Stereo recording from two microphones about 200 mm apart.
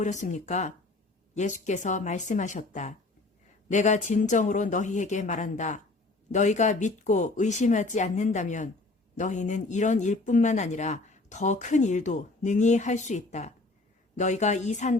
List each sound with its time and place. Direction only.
0.0 s speech: 35° left (ahead or behind)